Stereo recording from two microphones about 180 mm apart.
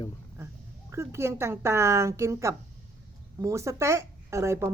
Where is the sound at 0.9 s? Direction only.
15° right (ahead or behind).